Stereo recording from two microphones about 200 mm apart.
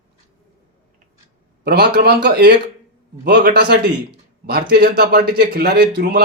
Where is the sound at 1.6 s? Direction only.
55° right (ahead or behind).